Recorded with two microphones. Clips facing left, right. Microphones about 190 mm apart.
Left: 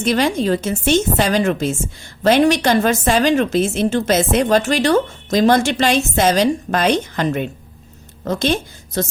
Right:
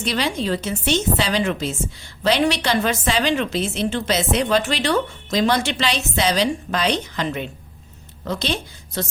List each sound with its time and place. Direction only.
0.0 s a woman's voice: 50° left (ahead or behind)